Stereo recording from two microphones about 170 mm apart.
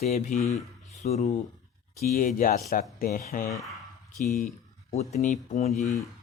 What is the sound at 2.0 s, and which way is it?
Speech, 55° left (ahead or behind).